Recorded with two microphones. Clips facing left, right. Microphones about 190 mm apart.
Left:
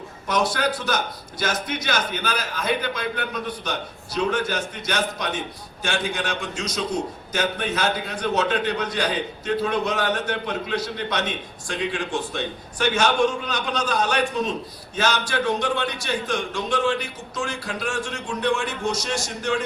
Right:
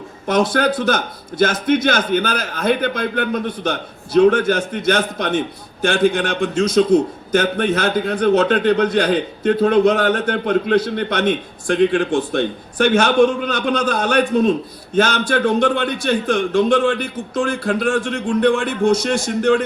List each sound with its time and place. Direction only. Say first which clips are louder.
0.3 s a man's voice: right 7 dB; 55° right (ahead or behind)